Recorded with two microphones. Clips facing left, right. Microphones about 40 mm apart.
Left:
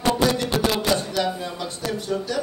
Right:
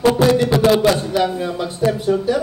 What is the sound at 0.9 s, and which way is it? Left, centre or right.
Speech, centre.